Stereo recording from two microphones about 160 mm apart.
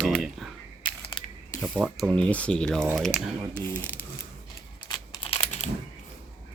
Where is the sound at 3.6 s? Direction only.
10° left (ahead or behind).